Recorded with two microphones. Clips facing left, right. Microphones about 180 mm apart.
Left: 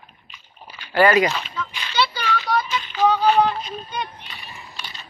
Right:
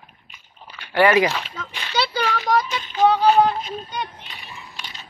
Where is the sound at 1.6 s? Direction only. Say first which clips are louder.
Left 3 dB; 40° right (ahead or behind).